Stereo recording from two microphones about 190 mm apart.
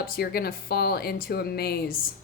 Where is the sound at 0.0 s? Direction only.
55° left (ahead or behind).